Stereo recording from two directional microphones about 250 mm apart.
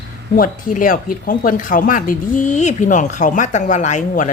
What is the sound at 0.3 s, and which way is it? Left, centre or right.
Speech, left.